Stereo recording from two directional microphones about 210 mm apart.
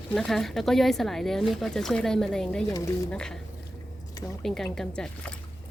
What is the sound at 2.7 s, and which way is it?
Speech, 15° left (ahead or behind).